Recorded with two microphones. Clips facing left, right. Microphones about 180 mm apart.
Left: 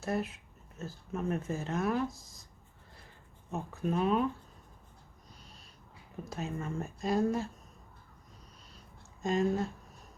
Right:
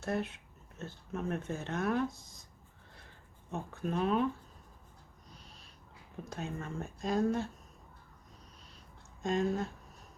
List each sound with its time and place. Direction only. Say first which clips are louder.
0.0 s speech: left 1 dB; centre (ahead or behind)
3.5 s speech: left 3 dB; centre (ahead or behind)
5.4 s owl: left 1 dB; centre (ahead or behind)
6.2 s speech: left 3 dB; 5° left (ahead or behind)
9.2 s speech: left 2 dB; centre (ahead or behind)